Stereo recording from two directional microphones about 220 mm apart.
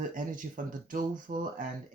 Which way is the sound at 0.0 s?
40° right (ahead or behind).